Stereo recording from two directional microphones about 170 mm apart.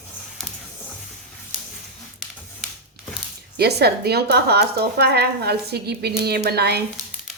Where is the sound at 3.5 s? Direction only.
70° right (ahead or behind).